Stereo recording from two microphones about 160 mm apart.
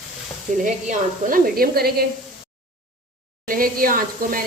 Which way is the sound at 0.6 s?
55° right (ahead or behind).